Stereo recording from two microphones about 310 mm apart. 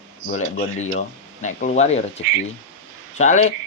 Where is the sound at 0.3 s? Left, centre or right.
Left.